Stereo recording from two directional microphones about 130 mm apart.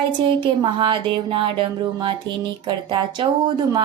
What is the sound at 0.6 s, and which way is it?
Music, 40° right (ahead or behind).